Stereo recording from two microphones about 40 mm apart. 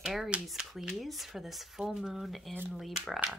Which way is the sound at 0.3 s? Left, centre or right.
Right.